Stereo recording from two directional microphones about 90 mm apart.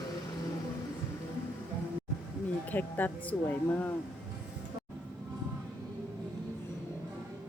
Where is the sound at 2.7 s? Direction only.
20° left (ahead or behind).